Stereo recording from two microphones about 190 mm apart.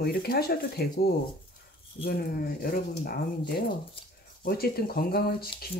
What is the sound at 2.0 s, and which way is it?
Speech, 50° left (ahead or behind).